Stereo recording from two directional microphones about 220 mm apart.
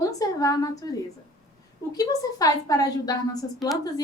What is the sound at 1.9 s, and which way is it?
A woman's voice, 15° left (ahead or behind).